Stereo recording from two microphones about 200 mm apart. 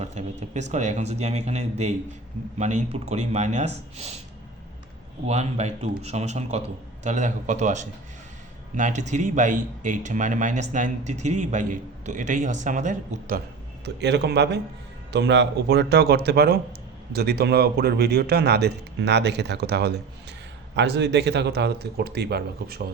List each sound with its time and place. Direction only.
0.0 s a man's voice: 35° right (ahead or behind)
5.2 s a man's voice: 35° right (ahead or behind)
13.8 s a man's voice: 55° right (ahead or behind)